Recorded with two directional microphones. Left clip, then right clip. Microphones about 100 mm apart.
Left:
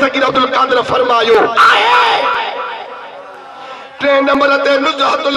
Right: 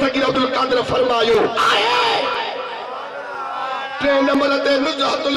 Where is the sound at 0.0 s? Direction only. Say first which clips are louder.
Left 6 dB; 45° left (ahead or behind).